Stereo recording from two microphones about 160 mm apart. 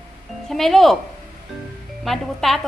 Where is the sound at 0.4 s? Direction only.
Centre (ahead or behind).